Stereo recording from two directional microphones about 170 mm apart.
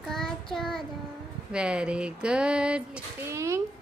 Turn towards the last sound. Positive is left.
turn(degrees=-15)  # may be behind; listen again after turning